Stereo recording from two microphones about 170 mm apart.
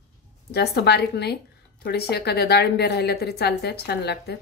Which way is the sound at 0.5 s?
70° left (ahead or behind).